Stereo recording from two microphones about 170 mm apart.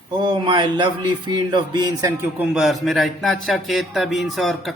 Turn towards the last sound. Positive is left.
turn(degrees=0)  # may be behind; listen again after turning